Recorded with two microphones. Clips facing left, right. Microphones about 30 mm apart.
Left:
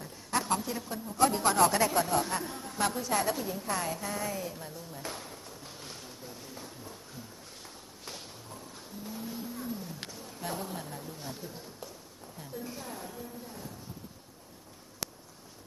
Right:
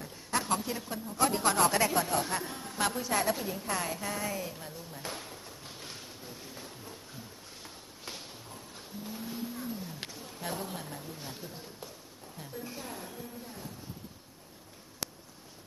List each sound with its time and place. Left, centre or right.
0.0 s a woman's voice: centre
9.0 s wild animals: centre
12.4 s a sound: centre